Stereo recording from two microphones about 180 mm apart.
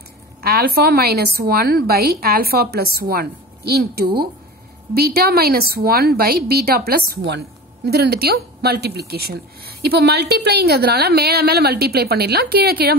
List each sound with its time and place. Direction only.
0.4 s a woman's voice: 60° right (ahead or behind)